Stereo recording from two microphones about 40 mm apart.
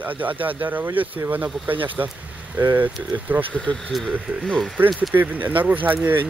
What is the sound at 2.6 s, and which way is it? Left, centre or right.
Speech, right.